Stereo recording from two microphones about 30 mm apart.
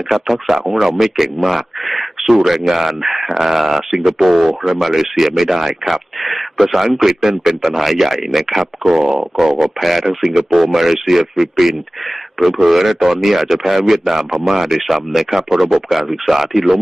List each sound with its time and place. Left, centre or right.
0.1 s speech: centre
1.5 s a sound: centre
2.3 s speech: centre